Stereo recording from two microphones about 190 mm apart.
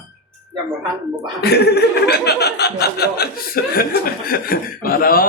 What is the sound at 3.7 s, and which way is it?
Speech, 50° left (ahead or behind).